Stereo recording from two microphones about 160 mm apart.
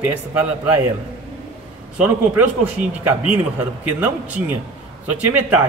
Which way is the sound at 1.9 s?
10° right (ahead or behind).